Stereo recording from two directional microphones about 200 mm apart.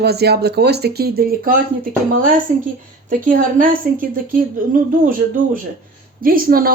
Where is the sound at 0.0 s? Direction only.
55° right (ahead or behind).